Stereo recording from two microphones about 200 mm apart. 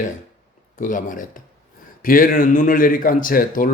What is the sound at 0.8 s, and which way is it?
Speech, 40° left (ahead or behind).